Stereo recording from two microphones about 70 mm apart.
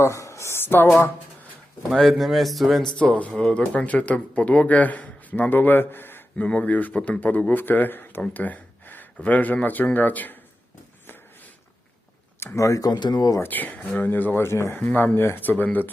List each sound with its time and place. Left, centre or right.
0.0 s speech: left
1.9 s a man's voice: centre
3.0 s speech: centre
6.3 s speech: centre
8.2 s gasp: left
9.2 s speech: left
12.5 s speech: left
12.9 s speech: left
13.4 s speech: left